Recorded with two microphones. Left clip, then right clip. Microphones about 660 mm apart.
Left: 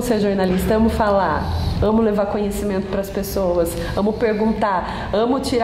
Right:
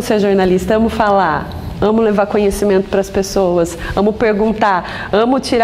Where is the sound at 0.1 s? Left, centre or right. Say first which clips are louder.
Right 7 dB; right.